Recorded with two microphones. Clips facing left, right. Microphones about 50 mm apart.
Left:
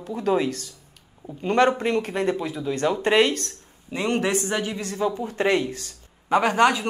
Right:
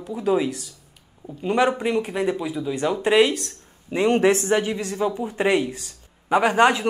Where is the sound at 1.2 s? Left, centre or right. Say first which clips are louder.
Left 1 dB; centre.